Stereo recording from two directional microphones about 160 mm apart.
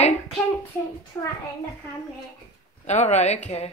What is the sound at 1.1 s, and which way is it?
Speech, 15° left (ahead or behind).